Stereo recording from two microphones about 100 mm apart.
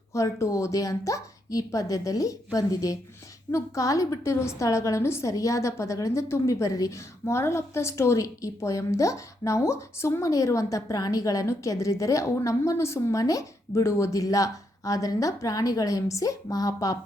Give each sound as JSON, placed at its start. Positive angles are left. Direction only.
{"t": 0.1, "sound": "a woman's voice", "side_deg": 30}